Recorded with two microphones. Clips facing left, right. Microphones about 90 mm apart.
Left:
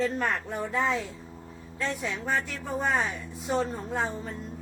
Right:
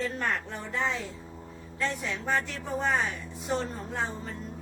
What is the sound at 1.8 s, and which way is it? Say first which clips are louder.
Speech: left 1 dB; 5° left (ahead or behind).